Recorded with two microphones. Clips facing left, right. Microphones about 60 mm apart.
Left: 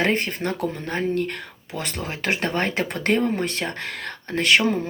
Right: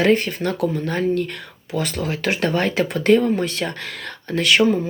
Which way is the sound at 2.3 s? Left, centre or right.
Left.